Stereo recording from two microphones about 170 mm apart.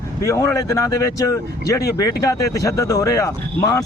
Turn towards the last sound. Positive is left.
turn(degrees=20)  # may be behind; listen again after turning